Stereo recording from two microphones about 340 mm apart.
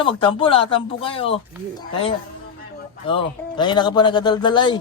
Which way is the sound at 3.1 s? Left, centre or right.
Centre.